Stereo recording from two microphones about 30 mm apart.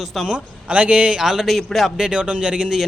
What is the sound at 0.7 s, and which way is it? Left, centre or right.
Speech, right.